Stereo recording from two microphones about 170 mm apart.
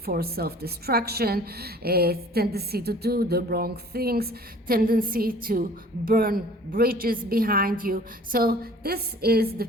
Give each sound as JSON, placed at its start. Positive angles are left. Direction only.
{"t": 0.0, "sound": "a woman's voice", "side_deg": -65}